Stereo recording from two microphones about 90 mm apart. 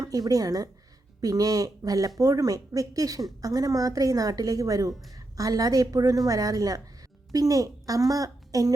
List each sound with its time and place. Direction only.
0.0 s a woman's voice: 45° right (ahead or behind)